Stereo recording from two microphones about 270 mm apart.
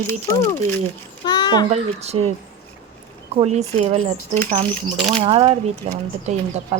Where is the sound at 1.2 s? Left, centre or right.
Centre.